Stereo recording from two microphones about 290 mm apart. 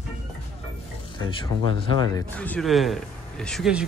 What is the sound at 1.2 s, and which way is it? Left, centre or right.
Speech, centre.